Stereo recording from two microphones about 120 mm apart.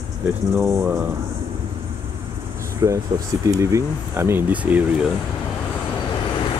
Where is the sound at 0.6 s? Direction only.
25° right (ahead or behind).